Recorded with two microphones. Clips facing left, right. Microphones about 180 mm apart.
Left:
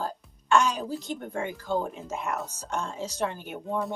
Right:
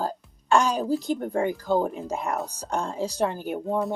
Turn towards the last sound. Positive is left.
turn(degrees=-35)  # may be behind; listen again after turning